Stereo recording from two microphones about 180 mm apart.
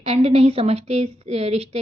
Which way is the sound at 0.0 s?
35° right (ahead or behind).